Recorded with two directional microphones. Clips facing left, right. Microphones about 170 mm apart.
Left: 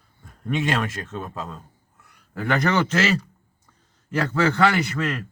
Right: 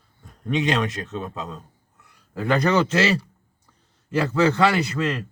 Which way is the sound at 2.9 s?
30° right (ahead or behind).